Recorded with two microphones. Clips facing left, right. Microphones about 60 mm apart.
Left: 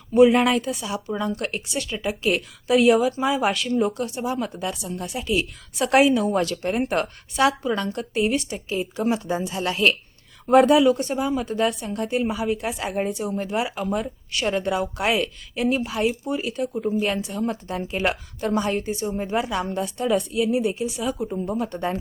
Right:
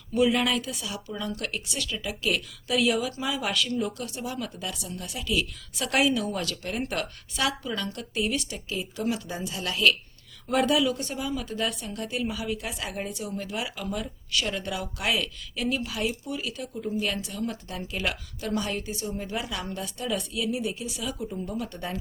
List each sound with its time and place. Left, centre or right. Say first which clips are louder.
0.1 s a woman's voice: left 8 dB; left